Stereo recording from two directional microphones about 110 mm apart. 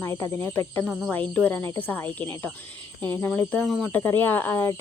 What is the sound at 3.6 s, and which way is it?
Speech, centre (ahead or behind).